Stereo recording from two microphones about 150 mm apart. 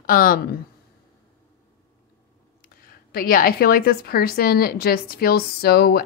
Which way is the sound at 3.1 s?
75° left (ahead or behind).